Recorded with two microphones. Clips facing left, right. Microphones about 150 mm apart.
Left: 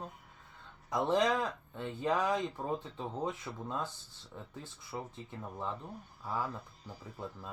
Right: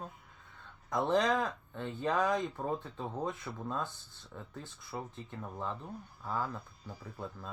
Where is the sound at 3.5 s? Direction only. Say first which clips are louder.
Right 1 dB; 10° left (ahead or behind).